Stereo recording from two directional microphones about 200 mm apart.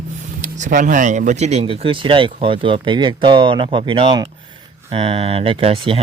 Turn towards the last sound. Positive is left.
turn(degrees=-25)  # may be behind; listen again after turning